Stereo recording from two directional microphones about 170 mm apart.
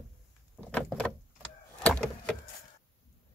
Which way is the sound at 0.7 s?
5° left (ahead or behind).